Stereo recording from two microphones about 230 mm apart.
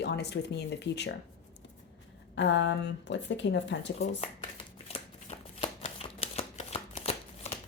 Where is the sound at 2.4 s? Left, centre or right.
Left.